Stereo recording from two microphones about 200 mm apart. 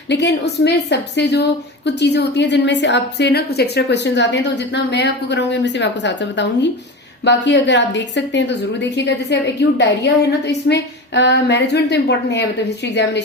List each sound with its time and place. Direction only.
0.1 s a woman's voice: 60° left (ahead or behind)